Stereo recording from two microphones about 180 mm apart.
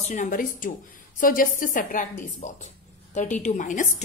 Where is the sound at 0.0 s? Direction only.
45° left (ahead or behind).